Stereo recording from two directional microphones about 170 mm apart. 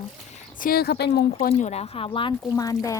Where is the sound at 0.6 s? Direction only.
60° left (ahead or behind).